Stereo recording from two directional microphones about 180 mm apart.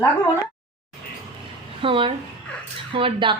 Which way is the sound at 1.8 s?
30° right (ahead or behind).